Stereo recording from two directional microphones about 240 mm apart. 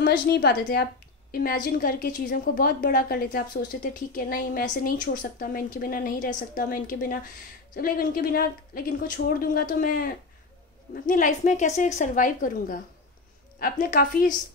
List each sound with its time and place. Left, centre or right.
0.0 s a woman's voice: left